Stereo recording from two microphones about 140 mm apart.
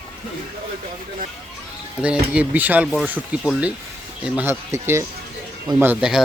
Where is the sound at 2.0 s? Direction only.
10° right (ahead or behind).